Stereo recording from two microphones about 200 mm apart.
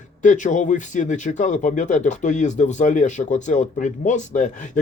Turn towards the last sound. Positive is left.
turn(degrees=35)  # may be behind; listen again after turning